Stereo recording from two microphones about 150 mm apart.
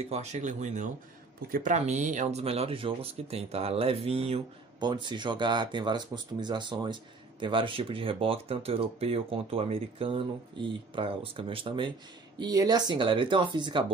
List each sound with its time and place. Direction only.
0.1 s speech: 50° right (ahead or behind)
4.7 s speech: 30° right (ahead or behind)